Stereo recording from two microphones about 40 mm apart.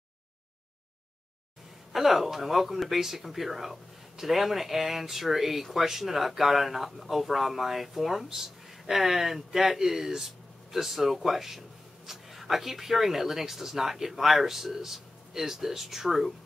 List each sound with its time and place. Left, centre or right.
1.9 s speech: centre